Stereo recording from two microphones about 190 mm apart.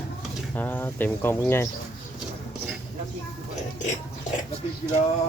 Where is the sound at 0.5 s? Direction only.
10° left (ahead or behind).